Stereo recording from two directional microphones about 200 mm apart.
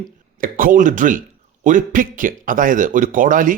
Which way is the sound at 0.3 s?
45° right (ahead or behind).